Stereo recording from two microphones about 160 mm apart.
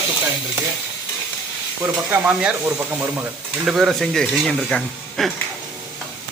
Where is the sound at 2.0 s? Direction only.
10° right (ahead or behind); by 5.3 s 5° left (ahead or behind).